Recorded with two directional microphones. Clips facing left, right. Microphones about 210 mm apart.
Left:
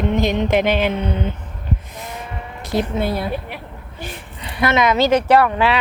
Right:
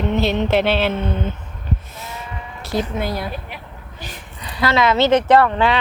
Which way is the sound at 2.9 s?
25° left (ahead or behind).